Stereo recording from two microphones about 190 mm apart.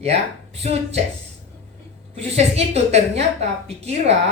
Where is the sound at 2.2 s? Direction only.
35° right (ahead or behind).